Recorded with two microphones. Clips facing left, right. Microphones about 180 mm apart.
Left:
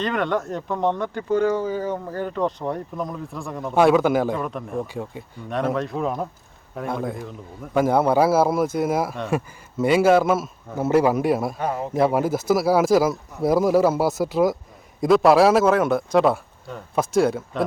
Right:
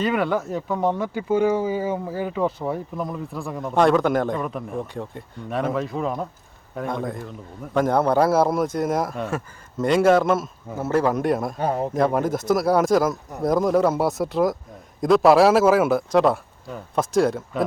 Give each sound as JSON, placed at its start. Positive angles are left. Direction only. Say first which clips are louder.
{"t": 0.0, "sound": "a man's voice", "louder": "right 1 dB", "side_deg": -5}
{"t": 11.6, "sound": "a man's voice", "louder": "right 2 dB", "side_deg": -35}
{"t": 11.9, "sound": "speech", "louder": "left 4 dB", "side_deg": 5}